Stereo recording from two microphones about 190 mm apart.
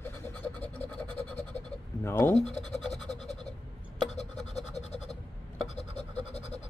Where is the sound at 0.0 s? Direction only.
10° left (ahead or behind).